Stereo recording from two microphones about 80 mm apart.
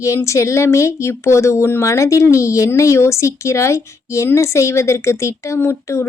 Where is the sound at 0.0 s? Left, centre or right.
Left.